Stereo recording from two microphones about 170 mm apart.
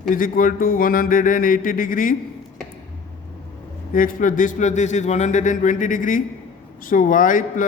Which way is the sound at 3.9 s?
55° left (ahead or behind).